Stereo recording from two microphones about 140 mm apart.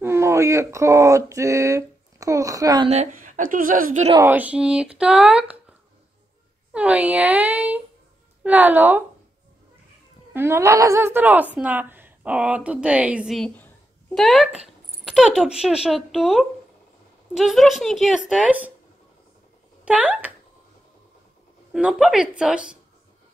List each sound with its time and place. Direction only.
0.0 s speech: 20° right (ahead or behind)
2.9 s a woman's voice: 60° right (ahead or behind); by 4.0 s 80° right
4.2 s a woman's voice: 10° right (ahead or behind)
10.3 s a woman's voice: 15° right (ahead or behind)
19.8 s speech: 10° right (ahead or behind)
21.7 s a woman's voice: 5° right (ahead or behind)